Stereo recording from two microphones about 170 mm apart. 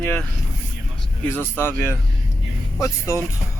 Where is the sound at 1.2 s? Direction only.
10° left (ahead or behind).